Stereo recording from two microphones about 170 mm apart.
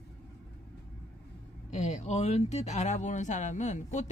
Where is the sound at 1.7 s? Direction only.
45° left (ahead or behind).